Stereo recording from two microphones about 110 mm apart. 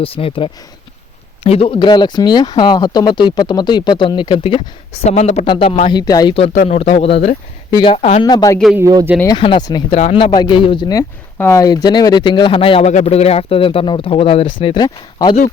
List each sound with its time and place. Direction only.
0.0 s speech: 60° left (ahead or behind); by 5.5 s 85° left
5.5 s speech: 55° left (ahead or behind)
5.8 s speech: 40° left (ahead or behind)
6.3 s speech: 65° left (ahead or behind)
7.7 s speech: 45° left (ahead or behind)
7.9 s speech: 75° left (ahead or behind)
8.2 s speech: 40° left (ahead or behind)
8.8 s speech: 35° right (ahead or behind)
9.6 s speech: 40° left (ahead or behind)
10.0 s speech: 60° left (ahead or behind)
11.3 s speech: 20° left (ahead or behind)
11.6 s speech: 40° left (ahead or behind); by 12.9 s 55° left (ahead or behind)
12.9 s speech: 85° left; by 15.4 s 40° left (ahead or behind)